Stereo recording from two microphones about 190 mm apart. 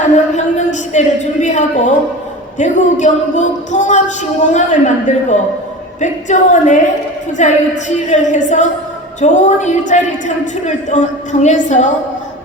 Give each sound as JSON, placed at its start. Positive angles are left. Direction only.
{"t": 0.0, "sound": "speech", "side_deg": 40}